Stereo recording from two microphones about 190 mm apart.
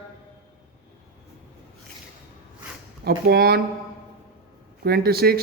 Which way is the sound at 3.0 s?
55° right (ahead or behind).